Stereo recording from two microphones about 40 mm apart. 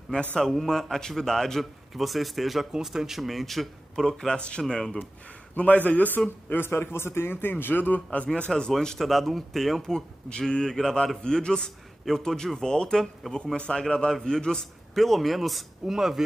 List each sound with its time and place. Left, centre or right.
0.3 s speech: centre
1.6 s speech: centre
4.3 s speech: left
5.6 s a man's voice: left
6.5 s a man's voice: left
8.5 s speech: centre
9.8 s speech: centre
13.2 s speech: centre
13.6 s speech: left
15.0 s speech: centre
15.9 s speech: centre